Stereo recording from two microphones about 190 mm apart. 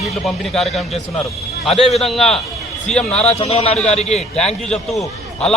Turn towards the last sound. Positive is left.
turn(degrees=0)  # may be behind; listen again after turning